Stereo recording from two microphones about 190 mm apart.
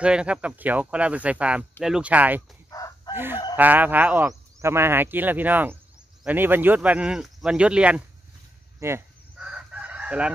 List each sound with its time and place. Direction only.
0.0 s speech: 5° right (ahead or behind)
3.1 s chicken: 20° left (ahead or behind)
3.5 s speech: 10° right (ahead or behind)
8.7 s chicken: 15° right (ahead or behind)